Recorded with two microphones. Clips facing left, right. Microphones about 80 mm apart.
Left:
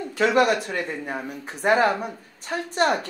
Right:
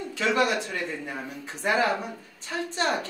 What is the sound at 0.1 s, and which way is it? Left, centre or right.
A woman's voice, left.